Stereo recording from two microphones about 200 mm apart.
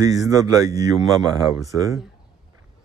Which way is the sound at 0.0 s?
15° right (ahead or behind).